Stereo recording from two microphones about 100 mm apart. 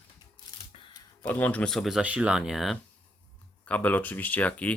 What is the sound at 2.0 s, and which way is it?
Speech, 10° right (ahead or behind).